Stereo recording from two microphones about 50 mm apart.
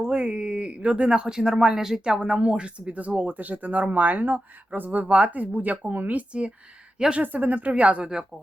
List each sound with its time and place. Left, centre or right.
0.0 s speech: centre